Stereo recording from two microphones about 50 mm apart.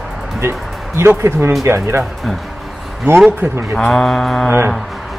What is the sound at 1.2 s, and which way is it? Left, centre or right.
Speech, right.